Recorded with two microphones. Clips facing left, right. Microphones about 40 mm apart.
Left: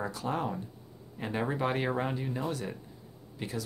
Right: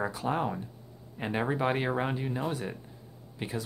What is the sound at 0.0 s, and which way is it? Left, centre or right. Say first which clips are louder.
Speech: right 3 dB; centre.